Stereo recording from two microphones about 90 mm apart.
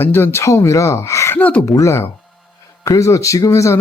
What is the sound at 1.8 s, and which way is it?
Speech, 30° left (ahead or behind).